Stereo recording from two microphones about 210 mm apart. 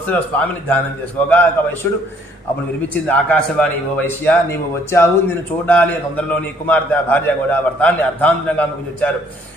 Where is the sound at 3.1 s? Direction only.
5° left (ahead or behind).